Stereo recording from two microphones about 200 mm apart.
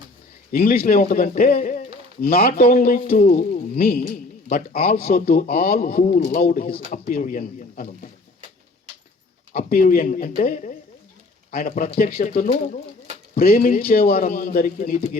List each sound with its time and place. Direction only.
0.5 s a man's voice: 45° left (ahead or behind)
9.5 s a man's voice: 45° left (ahead or behind)